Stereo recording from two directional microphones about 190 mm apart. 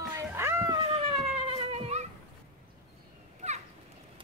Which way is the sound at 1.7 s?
35° right (ahead or behind).